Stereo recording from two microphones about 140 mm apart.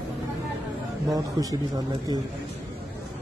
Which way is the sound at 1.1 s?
25° right (ahead or behind).